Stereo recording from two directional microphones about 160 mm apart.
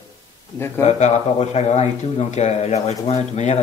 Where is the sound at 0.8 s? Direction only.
45° left (ahead or behind).